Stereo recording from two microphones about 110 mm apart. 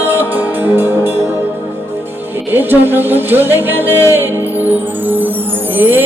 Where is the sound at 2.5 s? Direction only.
20° right (ahead or behind).